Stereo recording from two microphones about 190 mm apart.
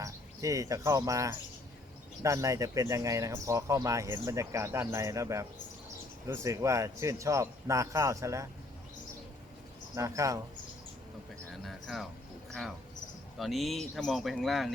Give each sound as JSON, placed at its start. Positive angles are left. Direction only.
{"t": 0.0, "sound": "speech", "side_deg": -15}
{"t": 9.9, "sound": "speech", "side_deg": -15}
{"t": 11.6, "sound": "speech", "side_deg": 0}
{"t": 13.4, "sound": "speech", "side_deg": 0}